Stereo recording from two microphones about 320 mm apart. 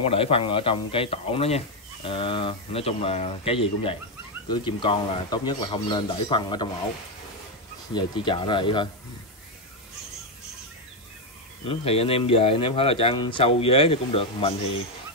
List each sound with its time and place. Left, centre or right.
0.0 s speech: centre
7.9 s speech: centre
11.6 s speech: centre